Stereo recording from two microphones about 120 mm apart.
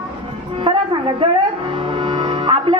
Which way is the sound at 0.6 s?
50° right (ahead or behind).